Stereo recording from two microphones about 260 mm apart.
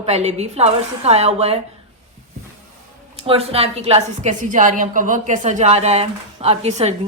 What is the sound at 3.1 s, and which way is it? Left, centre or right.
A woman's voice, right.